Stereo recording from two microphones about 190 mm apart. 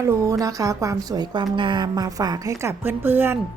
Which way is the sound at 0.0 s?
15° right (ahead or behind).